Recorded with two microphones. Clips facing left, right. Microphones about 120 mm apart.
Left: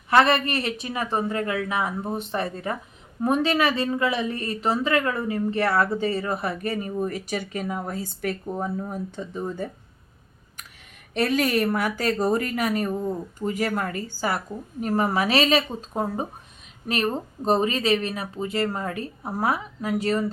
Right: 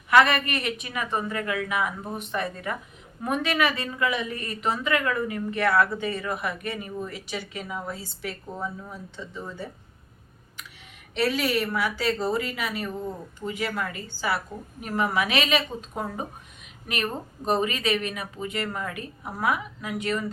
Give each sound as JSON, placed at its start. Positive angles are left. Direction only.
{"t": 0.1, "sound": "speech", "side_deg": 30}
{"t": 11.1, "sound": "speech", "side_deg": 50}